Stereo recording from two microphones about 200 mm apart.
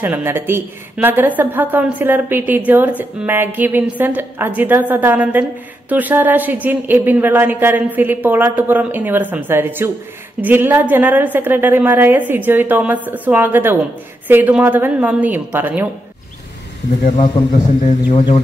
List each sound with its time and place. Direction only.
0.0 s a woman's voice: 10° right (ahead or behind)
17.8 s speech: 30° left (ahead or behind)